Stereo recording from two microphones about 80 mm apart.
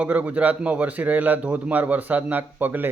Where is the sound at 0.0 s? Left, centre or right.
Centre.